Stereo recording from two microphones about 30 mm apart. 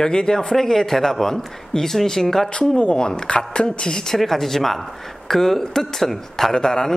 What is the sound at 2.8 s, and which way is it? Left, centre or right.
Speech, left.